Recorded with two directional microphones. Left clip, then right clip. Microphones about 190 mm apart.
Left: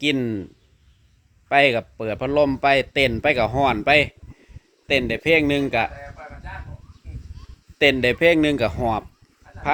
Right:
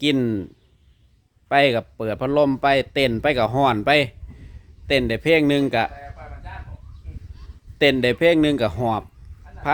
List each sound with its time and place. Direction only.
0.0 s speech: 30° right (ahead or behind)
1.5 s speech: 20° right (ahead or behind)
8.0 s speech: 15° right (ahead or behind)